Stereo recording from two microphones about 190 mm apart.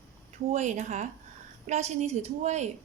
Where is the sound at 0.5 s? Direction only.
40° right (ahead or behind).